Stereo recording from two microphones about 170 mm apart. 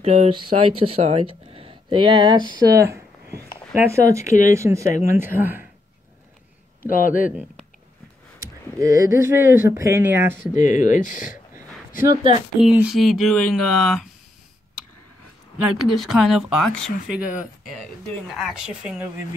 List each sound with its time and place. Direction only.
0.0 s speech: 35° right (ahead or behind); by 5.7 s 10° right (ahead or behind)
6.9 s speech: 55° left (ahead or behind)
8.4 s speech: 20° right (ahead or behind)
10.4 s speech: 45° left (ahead or behind)
12.5 s speech: 5° right (ahead or behind)
15.6 s speech: centre (ahead or behind)